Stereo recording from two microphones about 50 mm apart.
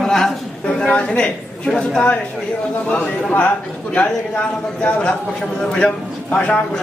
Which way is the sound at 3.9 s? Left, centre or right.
Left.